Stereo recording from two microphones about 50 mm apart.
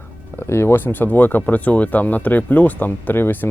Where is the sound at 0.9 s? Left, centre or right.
Left.